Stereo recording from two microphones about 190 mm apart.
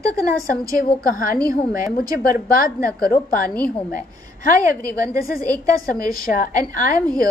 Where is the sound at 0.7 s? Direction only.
45° left (ahead or behind).